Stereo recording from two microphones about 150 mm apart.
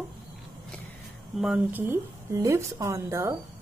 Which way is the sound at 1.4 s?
10° right (ahead or behind).